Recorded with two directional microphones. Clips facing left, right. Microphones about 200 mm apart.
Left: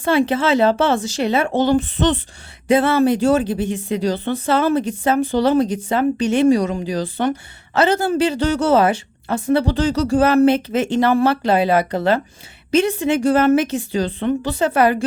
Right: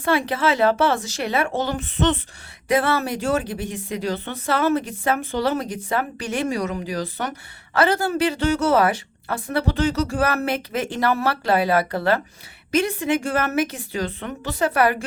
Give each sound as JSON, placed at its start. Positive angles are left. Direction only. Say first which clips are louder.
{"t": 0.0, "sound": "speech", "louder": "left 4 dB", "side_deg": 25}